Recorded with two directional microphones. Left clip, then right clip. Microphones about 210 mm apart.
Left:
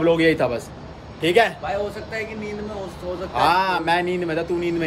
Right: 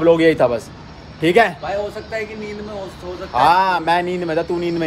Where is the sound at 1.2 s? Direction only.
25° right (ahead or behind).